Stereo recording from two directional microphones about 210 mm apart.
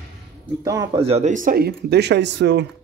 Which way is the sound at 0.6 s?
20° right (ahead or behind).